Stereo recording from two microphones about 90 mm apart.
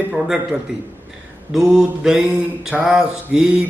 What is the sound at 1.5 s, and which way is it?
A man's voice, 5° right (ahead or behind).